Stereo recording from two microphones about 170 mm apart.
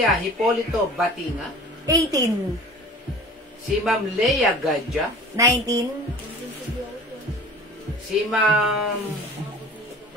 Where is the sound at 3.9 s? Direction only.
Centre (ahead or behind).